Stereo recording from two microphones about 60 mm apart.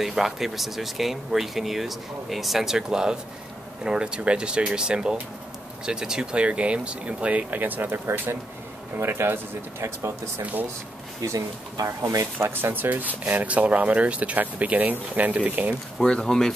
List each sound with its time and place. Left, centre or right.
0.0 s speech: centre; by 10.1 s right
11.2 s speech: right
12.4 s speech: right
16.0 s speech: centre